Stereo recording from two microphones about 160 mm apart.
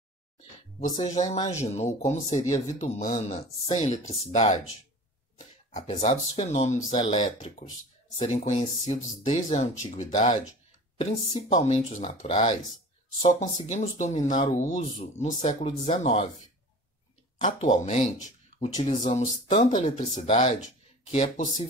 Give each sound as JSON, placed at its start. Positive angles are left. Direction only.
{"t": 1.0, "sound": "speech", "side_deg": 45}
{"t": 5.7, "sound": "speech", "side_deg": 50}
{"t": 7.0, "sound": "speech", "side_deg": 30}
{"t": 8.5, "sound": "speech", "side_deg": 45}
{"t": 17.4, "sound": "speech", "side_deg": 50}